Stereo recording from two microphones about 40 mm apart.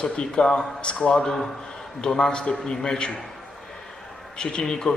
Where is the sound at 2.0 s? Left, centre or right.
Centre.